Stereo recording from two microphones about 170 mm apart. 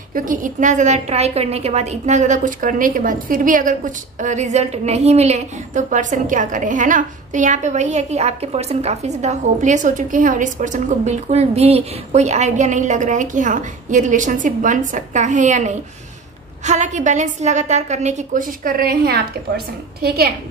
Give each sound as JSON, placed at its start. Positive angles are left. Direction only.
{"t": 0.1, "sound": "a woman's voice", "side_deg": -50}